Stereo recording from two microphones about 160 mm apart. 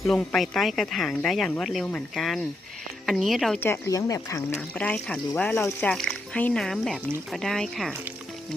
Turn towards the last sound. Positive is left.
turn(degrees=0)  # may be behind; listen again after turning